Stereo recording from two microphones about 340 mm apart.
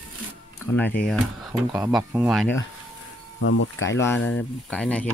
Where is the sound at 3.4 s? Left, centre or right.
Left.